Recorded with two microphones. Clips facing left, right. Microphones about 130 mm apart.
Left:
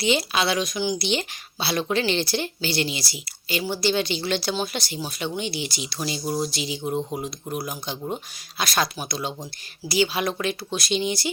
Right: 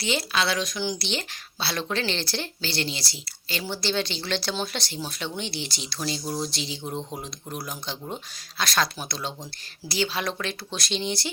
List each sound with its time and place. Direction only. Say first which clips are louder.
0.0 s speech: left 4 dB; 15° left (ahead or behind)